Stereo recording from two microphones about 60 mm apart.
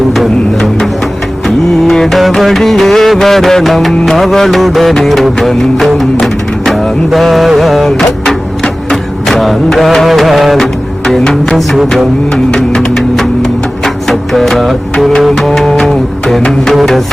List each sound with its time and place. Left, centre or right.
0.1 s music: centre
12.3 s music: centre